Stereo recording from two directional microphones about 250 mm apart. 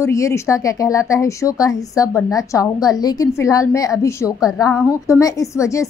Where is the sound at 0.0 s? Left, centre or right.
Centre.